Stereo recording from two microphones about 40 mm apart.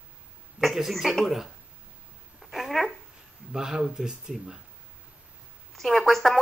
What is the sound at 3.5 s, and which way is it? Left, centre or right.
Speech, centre.